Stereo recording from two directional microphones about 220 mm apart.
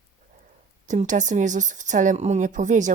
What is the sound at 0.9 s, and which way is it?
Speech, 35° right (ahead or behind).